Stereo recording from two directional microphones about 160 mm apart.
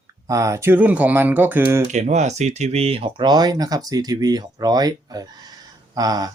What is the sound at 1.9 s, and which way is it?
Speech, 45° right (ahead or behind).